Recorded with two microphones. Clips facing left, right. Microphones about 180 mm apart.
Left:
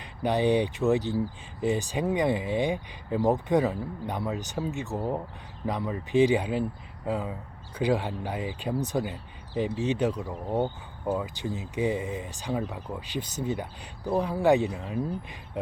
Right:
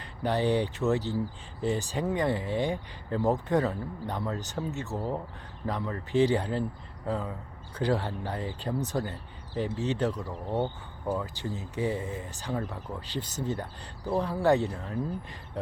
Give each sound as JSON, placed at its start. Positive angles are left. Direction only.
{"t": 0.0, "sound": "speech", "side_deg": 15}